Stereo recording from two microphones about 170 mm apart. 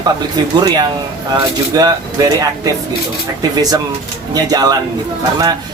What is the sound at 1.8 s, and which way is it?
Speech, 20° right (ahead or behind).